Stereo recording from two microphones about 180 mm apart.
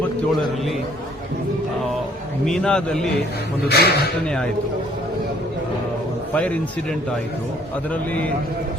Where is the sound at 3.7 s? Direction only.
65° left (ahead or behind).